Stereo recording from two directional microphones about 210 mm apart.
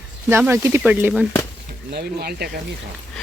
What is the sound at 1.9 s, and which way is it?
Speech, 50° right (ahead or behind).